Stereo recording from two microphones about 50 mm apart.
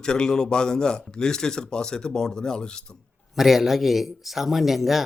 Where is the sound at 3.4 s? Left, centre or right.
Centre.